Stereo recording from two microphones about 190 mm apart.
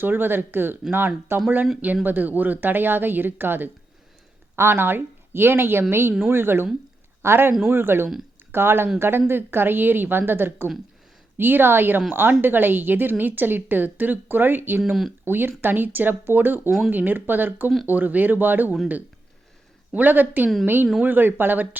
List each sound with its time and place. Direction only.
0.0 s a woman's voice: 10° right (ahead or behind)